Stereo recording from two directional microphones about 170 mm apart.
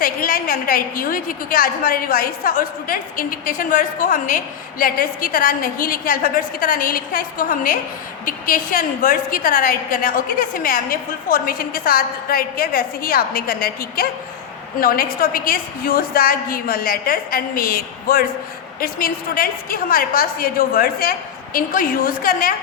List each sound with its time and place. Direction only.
0.0 s a woman's voice: 55° left (ahead or behind)